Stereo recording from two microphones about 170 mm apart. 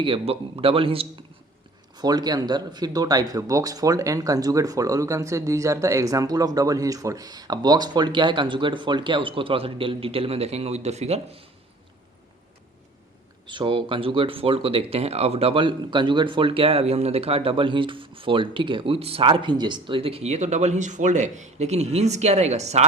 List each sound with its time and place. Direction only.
0.0 s speech: 35° right (ahead or behind)
13.5 s speech: 30° right (ahead or behind)